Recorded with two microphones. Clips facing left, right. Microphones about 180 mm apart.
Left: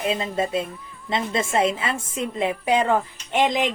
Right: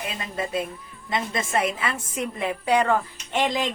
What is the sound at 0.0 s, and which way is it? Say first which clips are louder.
Speech: left 7 dB; 25° left (ahead or behind).